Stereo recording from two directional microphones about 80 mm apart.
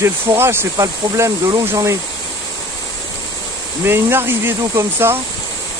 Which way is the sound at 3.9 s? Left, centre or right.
Right.